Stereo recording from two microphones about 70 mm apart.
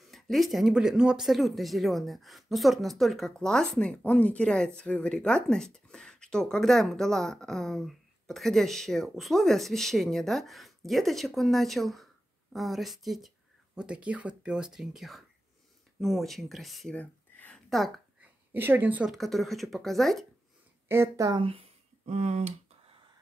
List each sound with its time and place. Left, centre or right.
0.0 s speech: centre
13.7 s speech: centre
16.9 s a sound: left
17.6 s a woman's voice: centre
18.5 s speech: right
19.1 s speech: centre
20.9 s a woman's voice: right